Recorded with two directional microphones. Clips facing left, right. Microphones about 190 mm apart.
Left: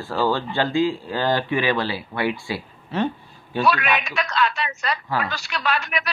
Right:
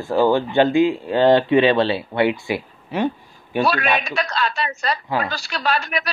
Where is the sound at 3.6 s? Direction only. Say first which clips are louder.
Even; 35° right (ahead or behind).